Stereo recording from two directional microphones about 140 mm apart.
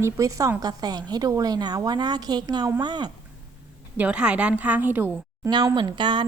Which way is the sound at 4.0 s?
5° right (ahead or behind).